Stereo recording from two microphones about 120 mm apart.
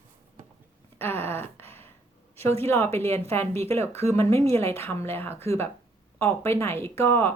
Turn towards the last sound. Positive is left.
turn(degrees=20)  # may be behind; listen again after turning